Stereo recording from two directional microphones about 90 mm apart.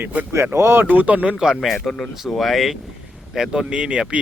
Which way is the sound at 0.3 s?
30° right (ahead or behind).